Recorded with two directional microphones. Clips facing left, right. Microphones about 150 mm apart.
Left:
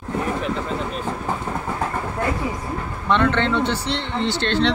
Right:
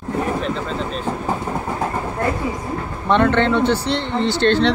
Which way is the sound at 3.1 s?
40° right (ahead or behind).